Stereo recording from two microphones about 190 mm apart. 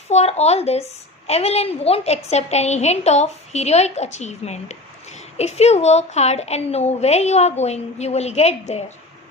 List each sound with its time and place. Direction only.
0.1 s a woman's voice: 35° left (ahead or behind)